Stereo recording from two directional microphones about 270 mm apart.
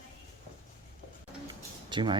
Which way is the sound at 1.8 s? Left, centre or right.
Centre.